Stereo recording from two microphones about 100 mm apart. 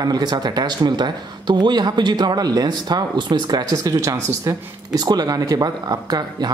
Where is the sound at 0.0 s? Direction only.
45° right (ahead or behind).